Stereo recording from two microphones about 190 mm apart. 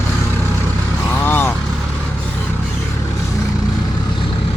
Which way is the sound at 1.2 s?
10° left (ahead or behind).